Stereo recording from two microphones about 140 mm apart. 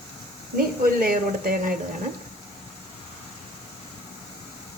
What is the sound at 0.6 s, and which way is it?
Speech, 90° right.